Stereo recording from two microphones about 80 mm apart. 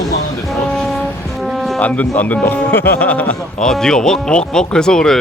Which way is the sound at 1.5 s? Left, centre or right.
Centre.